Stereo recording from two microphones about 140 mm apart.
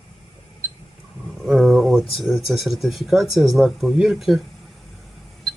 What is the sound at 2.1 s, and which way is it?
Speech, centre (ahead or behind).